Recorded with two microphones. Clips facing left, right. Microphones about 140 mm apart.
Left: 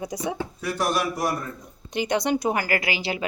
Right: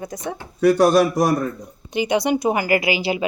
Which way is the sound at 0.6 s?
70° right (ahead or behind).